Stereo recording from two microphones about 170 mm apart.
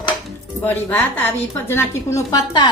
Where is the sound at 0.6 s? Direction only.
10° left (ahead or behind).